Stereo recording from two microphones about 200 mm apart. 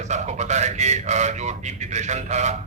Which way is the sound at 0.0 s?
35° right (ahead or behind).